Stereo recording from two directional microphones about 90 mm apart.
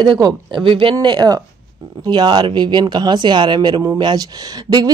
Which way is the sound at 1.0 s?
50° right (ahead or behind).